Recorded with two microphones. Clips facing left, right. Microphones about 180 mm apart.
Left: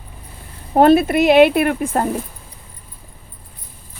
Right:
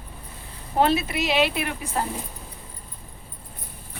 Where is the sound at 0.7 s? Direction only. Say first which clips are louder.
Left 10 dB; 55° left (ahead or behind).